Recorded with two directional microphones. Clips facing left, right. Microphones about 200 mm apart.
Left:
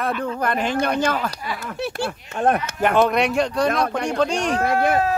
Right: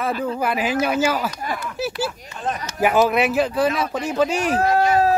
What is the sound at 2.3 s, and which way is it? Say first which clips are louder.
Speech: left 8 dB; 60° left (ahead or behind).